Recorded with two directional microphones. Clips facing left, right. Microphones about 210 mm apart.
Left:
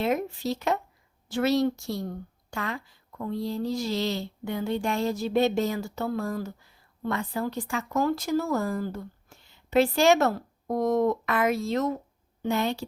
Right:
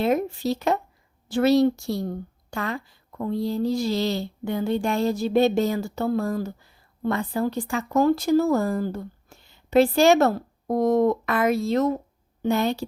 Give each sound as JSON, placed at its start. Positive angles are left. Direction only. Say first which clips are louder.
{"t": 0.0, "sound": "a woman's voice", "louder": "right 4 dB", "side_deg": -35}